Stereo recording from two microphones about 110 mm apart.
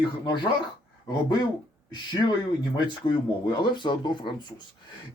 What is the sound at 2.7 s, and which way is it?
Speech, 45° left (ahead or behind).